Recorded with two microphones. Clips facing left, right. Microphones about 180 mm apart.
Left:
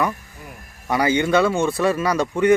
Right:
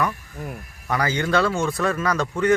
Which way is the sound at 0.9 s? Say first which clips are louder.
Left 4 dB; 10° left (ahead or behind).